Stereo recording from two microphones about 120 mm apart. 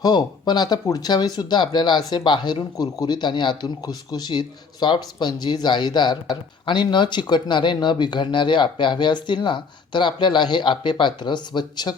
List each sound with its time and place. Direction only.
0.0 s speech: 35° left (ahead or behind)